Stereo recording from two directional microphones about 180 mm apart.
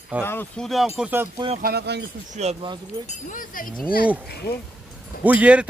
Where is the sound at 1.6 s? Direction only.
60° right (ahead or behind).